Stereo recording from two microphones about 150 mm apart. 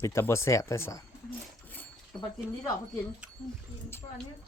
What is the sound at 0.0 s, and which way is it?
Speech, 20° left (ahead or behind).